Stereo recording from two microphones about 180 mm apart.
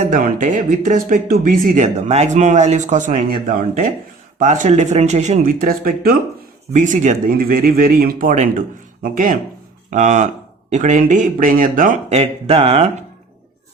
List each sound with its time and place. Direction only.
0.1 s speech: 45° right (ahead or behind)
6.7 s speech: 45° right (ahead or behind)